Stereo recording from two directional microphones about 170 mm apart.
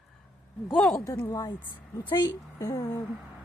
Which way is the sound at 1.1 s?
20° left (ahead or behind).